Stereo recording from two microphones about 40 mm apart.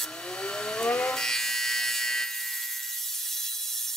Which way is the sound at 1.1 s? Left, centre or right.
Centre.